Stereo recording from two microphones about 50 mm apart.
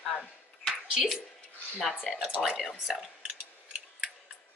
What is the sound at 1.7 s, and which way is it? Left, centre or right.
Speech, centre.